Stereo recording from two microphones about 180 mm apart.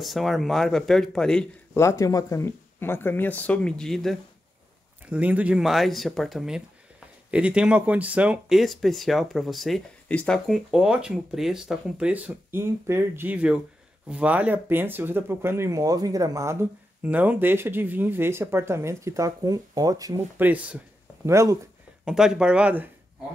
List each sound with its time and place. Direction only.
0.0 s speech: centre (ahead or behind)
1.8 s speech: 15° left (ahead or behind); by 21.5 s 15° right (ahead or behind)
22.0 s speech: 5° right (ahead or behind)